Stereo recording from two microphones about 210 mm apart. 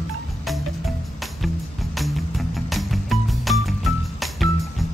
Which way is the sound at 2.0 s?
Centre (ahead or behind).